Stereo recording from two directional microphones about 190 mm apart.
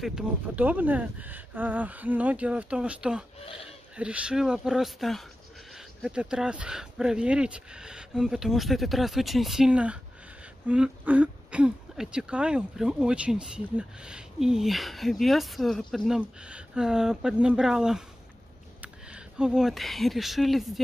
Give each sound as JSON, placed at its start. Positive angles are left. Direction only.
{"t": 0.0, "sound": "speech", "side_deg": -5}